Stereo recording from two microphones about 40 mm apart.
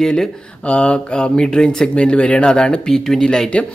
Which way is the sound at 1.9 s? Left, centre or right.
Left.